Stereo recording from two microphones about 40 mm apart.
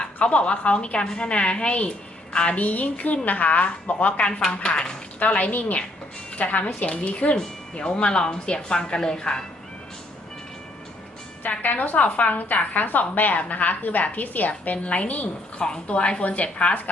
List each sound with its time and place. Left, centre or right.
0.2 s speech: left
2.6 s a woman's voice: left
4.3 s speech: centre
5.2 s a woman's voice: left; by 9.4 s centre
11.6 s a woman's voice: left